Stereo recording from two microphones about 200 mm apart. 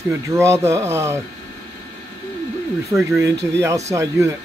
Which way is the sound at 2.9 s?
15° right (ahead or behind).